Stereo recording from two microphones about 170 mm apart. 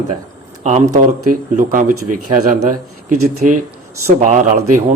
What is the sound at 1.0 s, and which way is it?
Speech, 50° right (ahead or behind).